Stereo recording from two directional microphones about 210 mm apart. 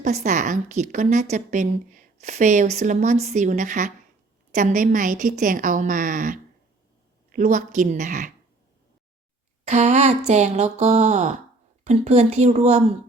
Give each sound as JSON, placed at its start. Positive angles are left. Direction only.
{"t": 0.0, "sound": "a woman's voice", "side_deg": -35}
{"t": 9.6, "sound": "a woman's voice", "side_deg": -35}